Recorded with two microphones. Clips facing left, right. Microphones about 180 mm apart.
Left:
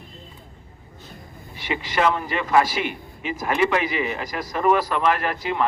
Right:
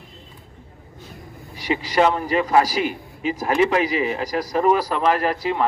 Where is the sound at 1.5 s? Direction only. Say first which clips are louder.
Right 5 dB; 35° right (ahead or behind).